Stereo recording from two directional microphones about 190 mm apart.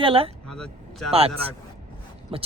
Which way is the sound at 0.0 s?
30° right (ahead or behind).